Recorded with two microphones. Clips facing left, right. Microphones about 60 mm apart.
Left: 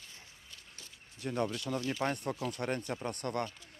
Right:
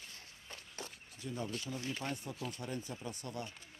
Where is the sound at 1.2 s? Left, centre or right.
Left.